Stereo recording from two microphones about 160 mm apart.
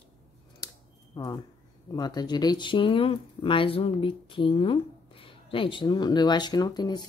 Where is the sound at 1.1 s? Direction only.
25° left (ahead or behind).